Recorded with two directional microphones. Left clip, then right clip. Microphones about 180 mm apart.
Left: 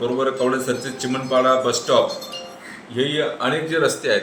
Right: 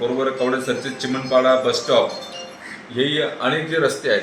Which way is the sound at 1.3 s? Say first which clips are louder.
Right 1 dB; 20° left (ahead or behind).